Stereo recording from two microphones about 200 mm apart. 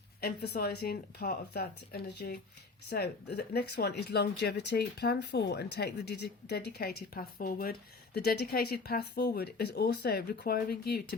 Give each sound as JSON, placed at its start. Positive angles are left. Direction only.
{"t": 0.2, "sound": "speech", "side_deg": 50}